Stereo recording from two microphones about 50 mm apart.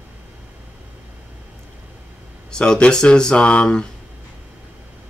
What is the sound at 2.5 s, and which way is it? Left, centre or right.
Speech, centre.